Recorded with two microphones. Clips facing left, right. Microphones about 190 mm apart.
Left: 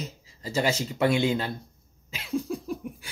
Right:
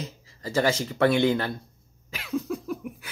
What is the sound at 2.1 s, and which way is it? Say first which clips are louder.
Cough: even; 25° left (ahead or behind).